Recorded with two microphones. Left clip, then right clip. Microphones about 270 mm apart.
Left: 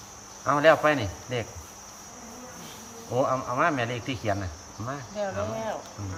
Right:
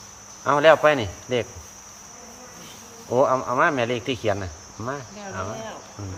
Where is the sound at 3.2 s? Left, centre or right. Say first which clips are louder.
Right 5 dB; right.